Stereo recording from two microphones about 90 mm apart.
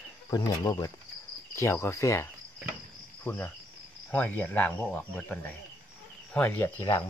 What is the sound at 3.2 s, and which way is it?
Speech, 20° left (ahead or behind).